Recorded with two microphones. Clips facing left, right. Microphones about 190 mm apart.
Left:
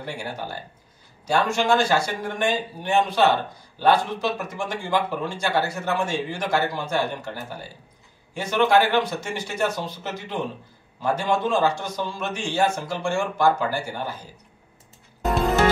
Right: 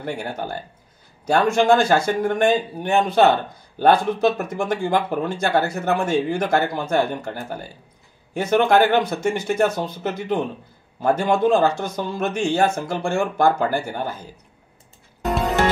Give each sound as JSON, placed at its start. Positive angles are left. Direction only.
{"t": 0.0, "sound": "speech", "side_deg": -50}